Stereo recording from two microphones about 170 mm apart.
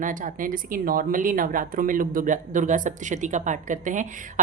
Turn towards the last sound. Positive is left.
turn(degrees=-50)  # may be behind; listen again after turning